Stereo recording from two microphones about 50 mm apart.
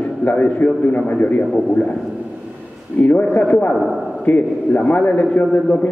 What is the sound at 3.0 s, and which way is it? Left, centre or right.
A man's voice, left.